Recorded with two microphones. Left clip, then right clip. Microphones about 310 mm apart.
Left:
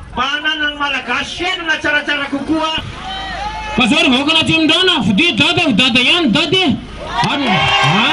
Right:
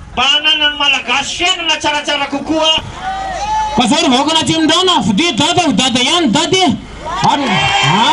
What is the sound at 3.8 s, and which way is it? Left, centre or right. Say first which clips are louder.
A man's voice: left 2 dB; centre.